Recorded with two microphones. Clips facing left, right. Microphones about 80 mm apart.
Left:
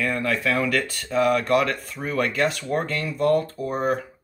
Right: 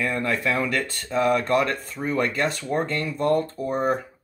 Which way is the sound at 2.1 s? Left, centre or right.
Right.